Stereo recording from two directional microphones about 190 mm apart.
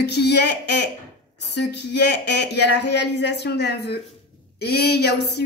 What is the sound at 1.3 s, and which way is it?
Speech, 65° left (ahead or behind).